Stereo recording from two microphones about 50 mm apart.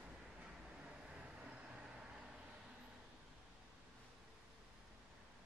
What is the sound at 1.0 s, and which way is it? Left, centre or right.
Vehicle, right.